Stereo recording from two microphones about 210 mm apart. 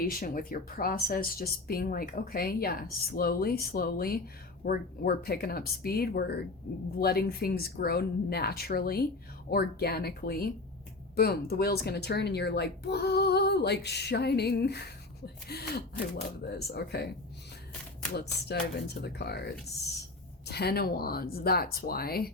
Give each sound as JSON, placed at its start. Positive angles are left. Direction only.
{"t": 0.0, "sound": "speech", "side_deg": 45}
{"t": 18.1, "sound": "speech", "side_deg": 50}